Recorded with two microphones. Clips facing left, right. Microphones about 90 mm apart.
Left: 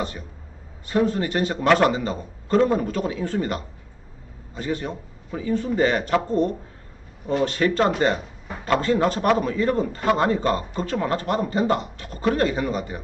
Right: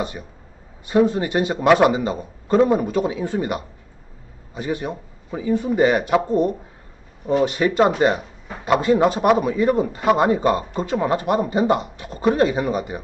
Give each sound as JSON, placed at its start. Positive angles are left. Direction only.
{"t": 0.0, "sound": "speech", "side_deg": -20}